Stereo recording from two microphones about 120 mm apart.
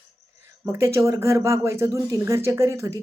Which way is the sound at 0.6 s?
20° right (ahead or behind).